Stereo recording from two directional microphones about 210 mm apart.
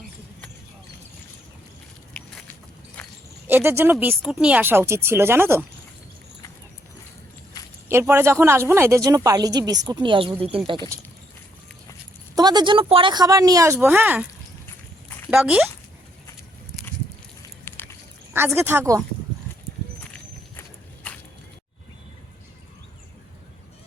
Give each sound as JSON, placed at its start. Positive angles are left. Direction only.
{"t": 2.2, "sound": "a sound", "side_deg": 5}
{"t": 3.0, "sound": "cricket", "side_deg": 5}
{"t": 3.4, "sound": "speech", "side_deg": -10}
{"t": 7.9, "sound": "speech", "side_deg": -10}
{"t": 12.3, "sound": "speech", "side_deg": -20}
{"t": 15.3, "sound": "speech", "side_deg": -5}
{"t": 17.7, "sound": "a sound", "side_deg": 10}
{"t": 18.3, "sound": "speech", "side_deg": -10}